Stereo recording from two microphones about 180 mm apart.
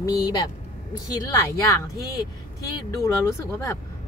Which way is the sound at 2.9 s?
20° left (ahead or behind).